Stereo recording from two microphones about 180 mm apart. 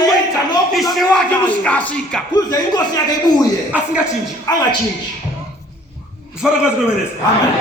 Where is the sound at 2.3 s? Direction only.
20° left (ahead or behind).